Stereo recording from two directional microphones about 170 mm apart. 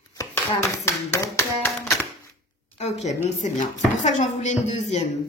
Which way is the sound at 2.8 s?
40° left (ahead or behind).